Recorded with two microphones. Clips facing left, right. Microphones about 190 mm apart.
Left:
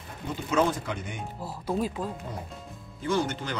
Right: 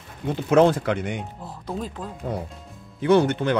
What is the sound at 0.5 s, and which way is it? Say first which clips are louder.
Speech: right 9 dB; 65° right (ahead or behind).